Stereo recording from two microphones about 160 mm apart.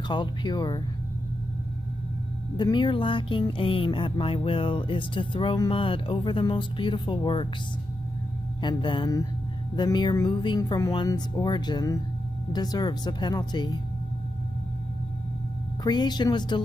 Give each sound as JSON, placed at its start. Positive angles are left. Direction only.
{"t": 0.1, "sound": "speech", "side_deg": 30}
{"t": 2.5, "sound": "music", "side_deg": 30}
{"t": 8.6, "sound": "speech", "side_deg": 30}
{"t": 15.8, "sound": "speech", "side_deg": 25}